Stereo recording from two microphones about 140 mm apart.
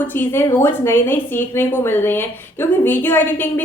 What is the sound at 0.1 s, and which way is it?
A woman's voice, 15° left (ahead or behind).